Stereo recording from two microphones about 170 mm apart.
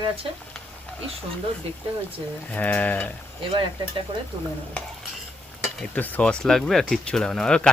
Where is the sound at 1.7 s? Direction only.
35° right (ahead or behind).